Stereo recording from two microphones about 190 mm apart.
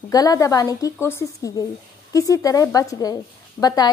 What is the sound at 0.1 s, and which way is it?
A woman's voice, 20° left (ahead or behind).